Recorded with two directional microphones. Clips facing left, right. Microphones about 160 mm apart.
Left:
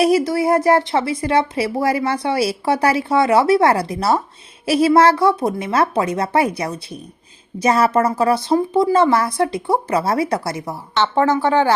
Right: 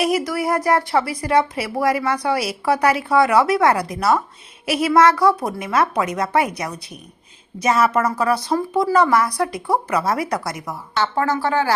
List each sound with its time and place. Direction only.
0.0 s a woman's voice: 30° left (ahead or behind)